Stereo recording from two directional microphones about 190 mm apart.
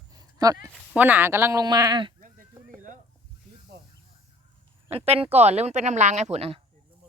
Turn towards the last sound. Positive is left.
turn(degrees=-35)  # may be behind; listen again after turning